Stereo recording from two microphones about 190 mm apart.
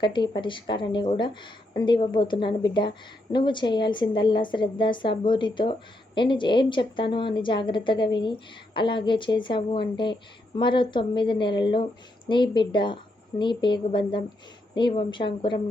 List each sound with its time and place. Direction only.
0.0 s a woman's voice: 25° left (ahead or behind)